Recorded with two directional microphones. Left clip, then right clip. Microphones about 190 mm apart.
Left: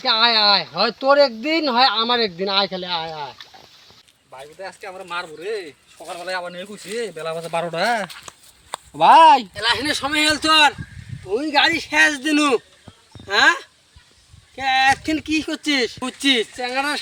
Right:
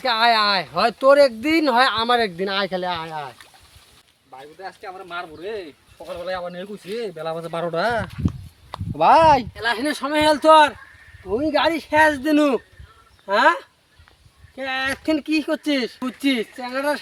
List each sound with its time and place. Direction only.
0.0 s speech: 15° right (ahead or behind)
4.6 s speech: 5° right (ahead or behind)